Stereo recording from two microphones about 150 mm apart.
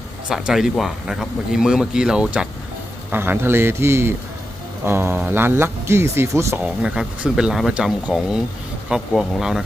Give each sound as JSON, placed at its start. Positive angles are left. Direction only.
{"t": 0.3, "sound": "speech", "side_deg": -5}
{"t": 6.7, "sound": "speech", "side_deg": -5}